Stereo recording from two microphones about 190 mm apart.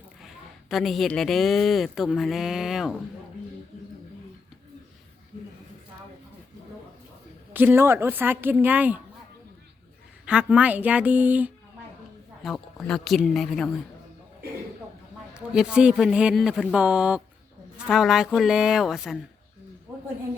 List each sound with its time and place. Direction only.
0.2 s a woman's voice: centre (ahead or behind)
7.5 s a woman's voice: 10° right (ahead or behind)
10.2 s a woman's voice: 5° right (ahead or behind)
15.4 s a woman's voice: 5° right (ahead or behind)